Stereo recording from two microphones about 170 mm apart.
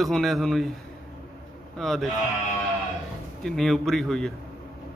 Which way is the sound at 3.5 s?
Centre (ahead or behind).